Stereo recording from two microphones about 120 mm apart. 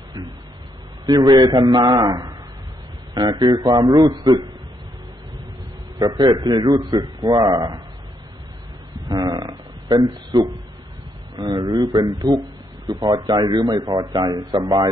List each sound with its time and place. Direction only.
1.0 s a man's voice: 30° right (ahead or behind)
5.9 s a man's voice: 35° right (ahead or behind)
9.1 s a sound: 35° right (ahead or behind)
11.3 s a man's voice: 35° right (ahead or behind)